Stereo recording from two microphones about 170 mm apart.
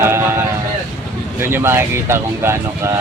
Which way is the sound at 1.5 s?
15° right (ahead or behind).